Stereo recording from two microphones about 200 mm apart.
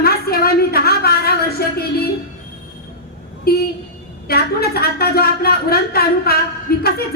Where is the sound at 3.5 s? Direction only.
50° left (ahead or behind).